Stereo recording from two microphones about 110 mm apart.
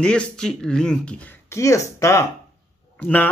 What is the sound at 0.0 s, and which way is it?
Speech, 5° left (ahead or behind).